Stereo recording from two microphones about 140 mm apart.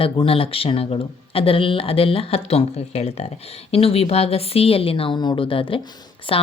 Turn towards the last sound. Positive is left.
turn(degrees=40)  # may be behind; listen again after turning